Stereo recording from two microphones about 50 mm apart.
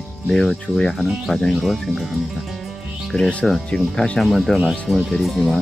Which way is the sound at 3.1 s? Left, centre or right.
Centre.